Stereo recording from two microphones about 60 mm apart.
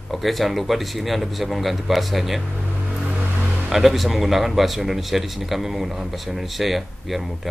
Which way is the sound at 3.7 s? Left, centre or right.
Centre.